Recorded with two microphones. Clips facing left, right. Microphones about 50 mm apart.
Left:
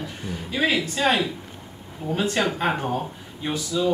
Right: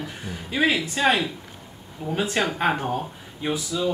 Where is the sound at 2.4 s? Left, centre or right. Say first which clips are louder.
Even; centre.